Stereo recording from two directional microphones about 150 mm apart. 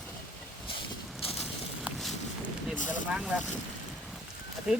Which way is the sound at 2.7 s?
55° left (ahead or behind).